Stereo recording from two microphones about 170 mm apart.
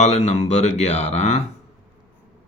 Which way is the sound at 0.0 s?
40° left (ahead or behind).